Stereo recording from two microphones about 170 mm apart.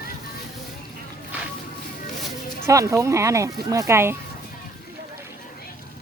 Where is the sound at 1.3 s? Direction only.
10° right (ahead or behind).